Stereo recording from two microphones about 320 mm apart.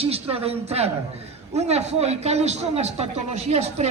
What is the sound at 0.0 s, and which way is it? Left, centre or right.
A man's voice, centre.